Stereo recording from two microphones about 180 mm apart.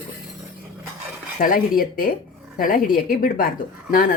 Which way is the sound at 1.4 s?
50° left (ahead or behind).